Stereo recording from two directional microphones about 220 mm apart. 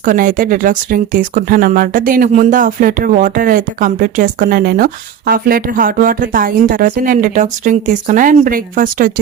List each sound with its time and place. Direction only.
0.0 s speech: 35° right (ahead or behind)